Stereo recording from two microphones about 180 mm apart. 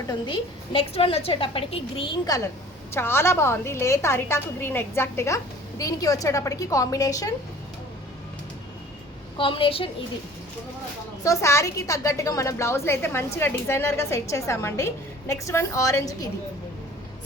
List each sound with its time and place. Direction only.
0.1 s a woman's voice: 30° left (ahead or behind)
2.9 s a woman's voice: 15° left (ahead or behind)
9.4 s a woman's voice: 30° left (ahead or behind)
11.2 s a woman's voice: 15° left (ahead or behind)